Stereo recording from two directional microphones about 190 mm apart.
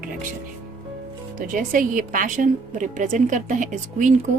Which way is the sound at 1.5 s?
45° right (ahead or behind).